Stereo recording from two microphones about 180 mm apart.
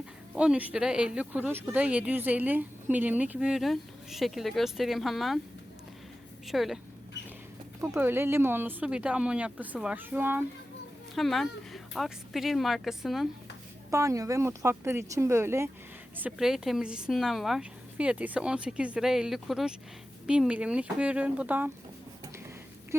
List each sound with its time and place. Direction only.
0.3 s speech: 5° right (ahead or behind)
6.5 s speech: centre (ahead or behind)
7.8 s speech: 10° right (ahead or behind)
11.1 s speech: centre (ahead or behind)
13.9 s speech: 15° right (ahead or behind)